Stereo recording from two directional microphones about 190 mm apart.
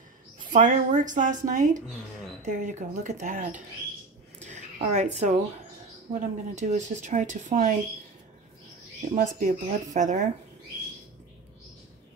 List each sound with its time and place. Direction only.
0.4 s speech: 45° right (ahead or behind)
4.4 s a sound: 40° right (ahead or behind)
6.1 s speech: 40° right (ahead or behind)
9.1 s speech: 40° right (ahead or behind)